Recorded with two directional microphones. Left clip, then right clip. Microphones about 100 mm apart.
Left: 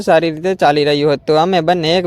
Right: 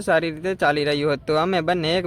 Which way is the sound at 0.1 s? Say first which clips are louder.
Left 8 dB; 60° left (ahead or behind).